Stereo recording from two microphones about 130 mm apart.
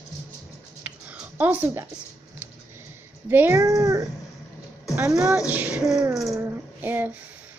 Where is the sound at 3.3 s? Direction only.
15° right (ahead or behind).